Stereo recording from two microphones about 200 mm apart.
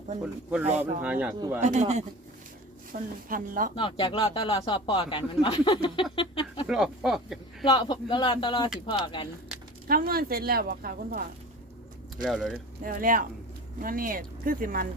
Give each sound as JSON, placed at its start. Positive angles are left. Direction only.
{"t": 0.8, "sound": "speech", "side_deg": -5}
{"t": 1.6, "sound": "speech", "side_deg": -35}
{"t": 3.8, "sound": "speech", "side_deg": 25}
{"t": 6.7, "sound": "speech", "side_deg": -5}
{"t": 7.6, "sound": "speech", "side_deg": 20}
{"t": 9.8, "sound": "speech", "side_deg": -45}
{"t": 12.1, "sound": "speech", "side_deg": -5}
{"t": 12.8, "sound": "speech", "side_deg": -45}